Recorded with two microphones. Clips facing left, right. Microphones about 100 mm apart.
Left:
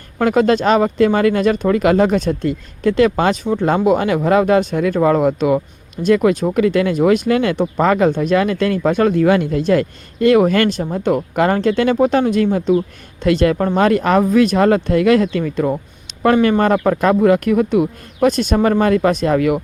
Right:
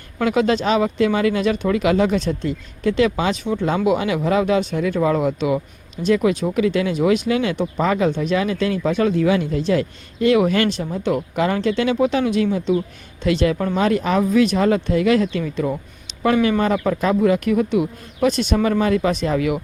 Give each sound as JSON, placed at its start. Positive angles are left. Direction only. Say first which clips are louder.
{"t": 0.2, "sound": "speech", "louder": "left 4 dB", "side_deg": 45}